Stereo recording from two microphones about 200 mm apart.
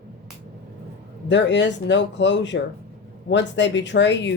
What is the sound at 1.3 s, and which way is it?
Speech, 60° left (ahead or behind).